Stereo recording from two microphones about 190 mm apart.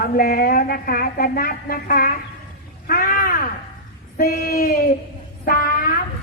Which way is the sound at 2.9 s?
50° left (ahead or behind).